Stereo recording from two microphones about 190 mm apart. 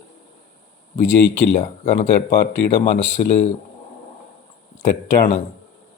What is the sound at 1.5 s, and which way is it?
Speech, 35° left (ahead or behind).